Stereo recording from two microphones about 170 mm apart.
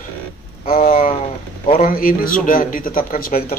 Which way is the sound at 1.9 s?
55° left (ahead or behind).